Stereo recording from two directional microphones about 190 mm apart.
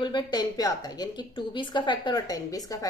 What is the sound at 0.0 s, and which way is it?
A woman's voice, 20° left (ahead or behind).